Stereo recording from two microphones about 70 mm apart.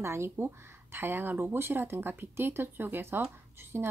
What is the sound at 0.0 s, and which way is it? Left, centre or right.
Speech, right.